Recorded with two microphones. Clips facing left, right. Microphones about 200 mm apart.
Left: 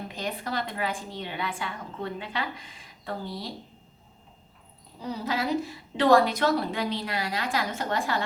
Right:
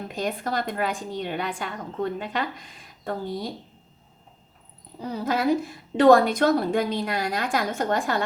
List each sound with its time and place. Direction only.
0.1 s a woman's voice: 45° right (ahead or behind)
4.9 s a woman's voice: 50° right (ahead or behind)